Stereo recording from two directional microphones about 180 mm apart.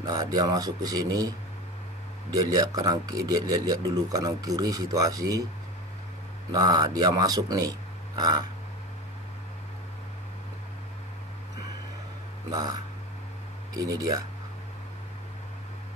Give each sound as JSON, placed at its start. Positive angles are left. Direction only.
{"t": 0.0, "sound": "speech", "side_deg": -20}
{"t": 2.3, "sound": "speech", "side_deg": -20}
{"t": 6.5, "sound": "speech", "side_deg": -20}
{"t": 12.4, "sound": "speech", "side_deg": -20}
{"t": 13.7, "sound": "speech", "side_deg": -20}